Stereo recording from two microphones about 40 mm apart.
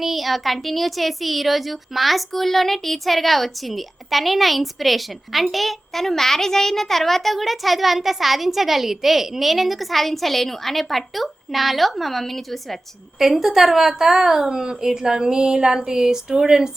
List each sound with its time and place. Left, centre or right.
0.0 s speech: centre
13.1 s a woman's voice: centre